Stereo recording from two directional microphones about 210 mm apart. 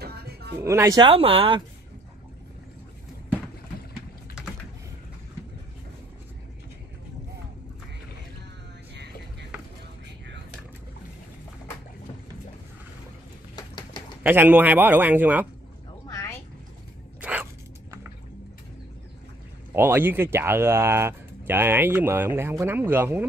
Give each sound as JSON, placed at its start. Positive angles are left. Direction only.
{"t": 0.6, "sound": "speech", "side_deg": -15}
{"t": 8.9, "sound": "music", "side_deg": -55}
{"t": 13.6, "sound": "typewriter", "side_deg": 20}
{"t": 14.2, "sound": "speech", "side_deg": -10}
{"t": 16.1, "sound": "a sound", "side_deg": 15}
{"t": 17.2, "sound": "a sound", "side_deg": -5}
{"t": 19.7, "sound": "speech", "side_deg": -10}